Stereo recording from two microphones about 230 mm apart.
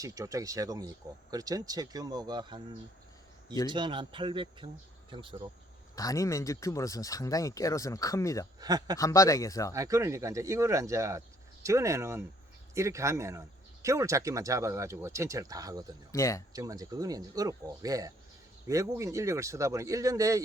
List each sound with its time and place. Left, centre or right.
0.0 s speech: centre
3.7 s speech: right
6.0 s speech: centre
8.6 s speech: centre
9.0 s speech: centre
9.7 s speech: centre
16.1 s speech: centre
16.5 s speech: centre